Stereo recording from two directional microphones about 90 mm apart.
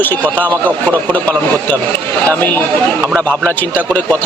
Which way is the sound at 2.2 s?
20° left (ahead or behind).